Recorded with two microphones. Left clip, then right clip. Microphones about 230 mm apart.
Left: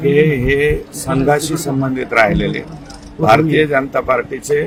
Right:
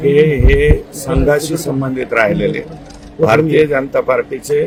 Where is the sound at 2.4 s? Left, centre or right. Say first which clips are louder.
Right 3 dB; right.